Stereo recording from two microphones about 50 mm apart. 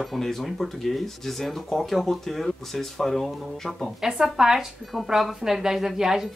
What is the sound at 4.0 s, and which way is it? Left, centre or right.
Speech, centre.